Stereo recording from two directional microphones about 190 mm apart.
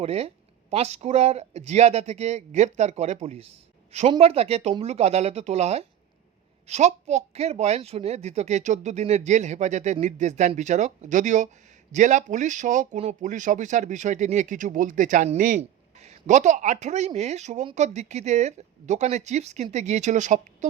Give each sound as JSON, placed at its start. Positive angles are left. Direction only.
{"t": 0.0, "sound": "speech", "side_deg": -30}